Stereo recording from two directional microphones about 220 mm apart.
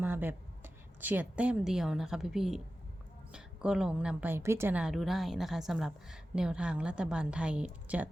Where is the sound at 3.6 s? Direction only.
5° right (ahead or behind).